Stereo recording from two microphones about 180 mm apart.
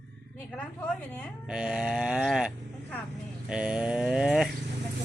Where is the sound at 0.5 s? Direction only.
5° left (ahead or behind).